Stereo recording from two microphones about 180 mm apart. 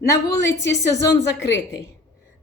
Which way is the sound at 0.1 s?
15° left (ahead or behind).